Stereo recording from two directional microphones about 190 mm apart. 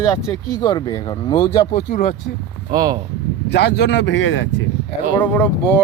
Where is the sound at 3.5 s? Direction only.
60° left (ahead or behind); by 4.5 s 80° left.